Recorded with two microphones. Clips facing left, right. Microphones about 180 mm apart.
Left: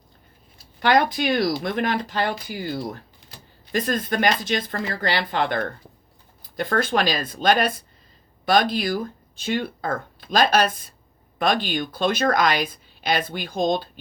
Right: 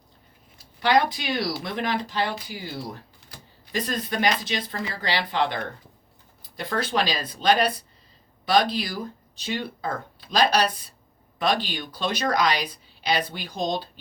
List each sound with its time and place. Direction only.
0.8 s a woman's voice: 50° left (ahead or behind)